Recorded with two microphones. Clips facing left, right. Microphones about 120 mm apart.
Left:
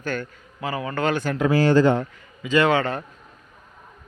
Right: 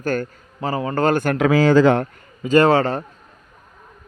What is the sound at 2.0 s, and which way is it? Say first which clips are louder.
Speech: right 5 dB; 50° right (ahead or behind).